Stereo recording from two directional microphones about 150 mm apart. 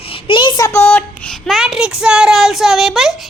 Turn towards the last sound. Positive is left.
turn(degrees=0)  # may be behind; listen again after turning